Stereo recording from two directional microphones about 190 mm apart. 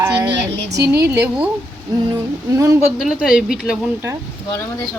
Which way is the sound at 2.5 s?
15° right (ahead or behind).